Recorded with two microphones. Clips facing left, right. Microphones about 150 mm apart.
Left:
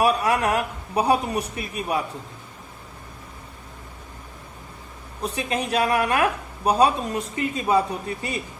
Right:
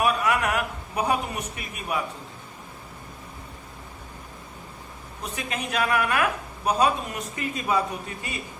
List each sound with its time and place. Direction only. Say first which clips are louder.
0.0 s a man's voice: left 3 dB; 35° left (ahead or behind)
5.2 s a man's voice: left 6 dB; 35° left (ahead or behind)